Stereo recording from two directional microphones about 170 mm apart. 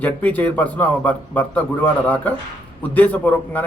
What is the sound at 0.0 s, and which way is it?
Speech, 10° left (ahead or behind).